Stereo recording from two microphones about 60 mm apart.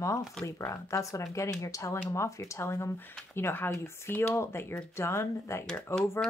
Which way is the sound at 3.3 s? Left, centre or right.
Left.